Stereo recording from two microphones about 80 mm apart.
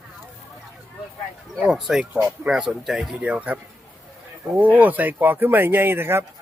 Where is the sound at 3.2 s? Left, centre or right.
Centre.